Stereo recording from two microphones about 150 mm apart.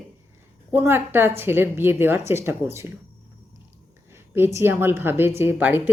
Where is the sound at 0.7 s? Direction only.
15° right (ahead or behind).